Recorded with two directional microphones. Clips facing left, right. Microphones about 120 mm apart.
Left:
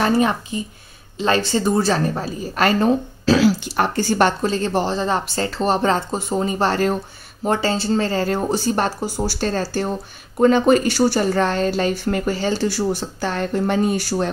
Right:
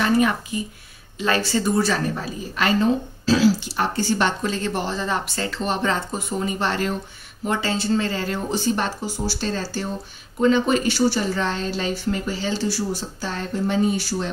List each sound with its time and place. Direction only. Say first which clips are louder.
0.0 s speech: left 2 dB; 30° left (ahead or behind); by 2.9 s 45° left (ahead or behind)
3.3 s speech: left 2 dB; 60° left (ahead or behind)